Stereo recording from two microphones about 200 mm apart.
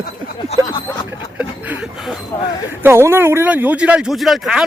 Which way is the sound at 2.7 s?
10° right (ahead or behind).